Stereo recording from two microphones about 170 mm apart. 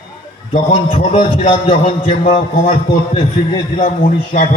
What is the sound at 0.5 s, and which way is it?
A man's voice, 35° left (ahead or behind).